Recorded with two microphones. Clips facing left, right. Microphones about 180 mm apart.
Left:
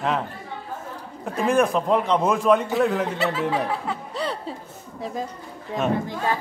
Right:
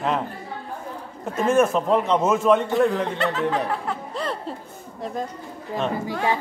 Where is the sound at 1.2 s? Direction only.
Centre (ahead or behind).